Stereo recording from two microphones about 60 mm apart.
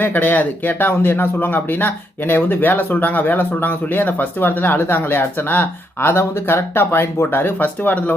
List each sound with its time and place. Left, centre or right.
0.0 s speech: left